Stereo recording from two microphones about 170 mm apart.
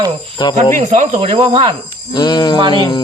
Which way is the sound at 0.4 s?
25° left (ahead or behind).